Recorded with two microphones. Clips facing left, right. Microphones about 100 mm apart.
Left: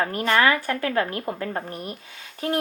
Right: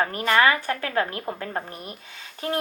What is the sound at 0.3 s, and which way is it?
Speech, 35° right (ahead or behind).